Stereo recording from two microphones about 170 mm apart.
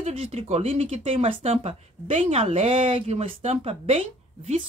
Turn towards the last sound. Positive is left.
turn(degrees=-30)  # may be behind; listen again after turning